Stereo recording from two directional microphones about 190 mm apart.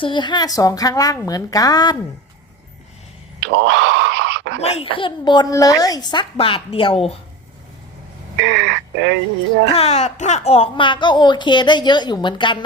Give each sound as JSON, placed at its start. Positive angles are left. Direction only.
{"t": 0.0, "sound": "speech", "side_deg": 25}
{"t": 3.4, "sound": "speech", "side_deg": -70}
{"t": 4.6, "sound": "speech", "side_deg": 30}
{"t": 8.4, "sound": "speech", "side_deg": -70}
{"t": 9.7, "sound": "speech", "side_deg": 35}